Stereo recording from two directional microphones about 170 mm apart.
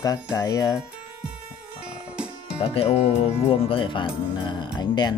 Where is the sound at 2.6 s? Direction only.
35° left (ahead or behind).